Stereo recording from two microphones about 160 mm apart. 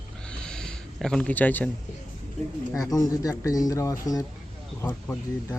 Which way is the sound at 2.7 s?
20° left (ahead or behind).